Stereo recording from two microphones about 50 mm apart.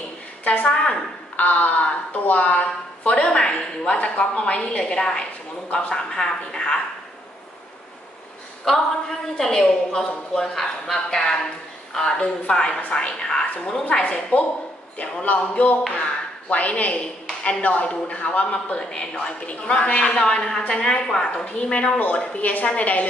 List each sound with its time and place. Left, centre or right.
0.4 s a sound: left
0.7 s a woman's voice: centre
1.3 s a woman's voice: left; by 6.8 s centre
9.4 s a woman's voice: centre; by 23.0 s left